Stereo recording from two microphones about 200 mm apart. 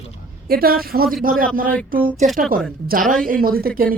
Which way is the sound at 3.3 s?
45° right (ahead or behind).